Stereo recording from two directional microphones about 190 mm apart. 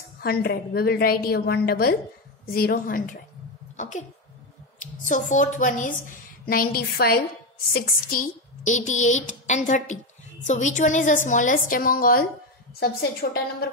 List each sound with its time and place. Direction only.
0.2 s a woman's voice: 55° left (ahead or behind)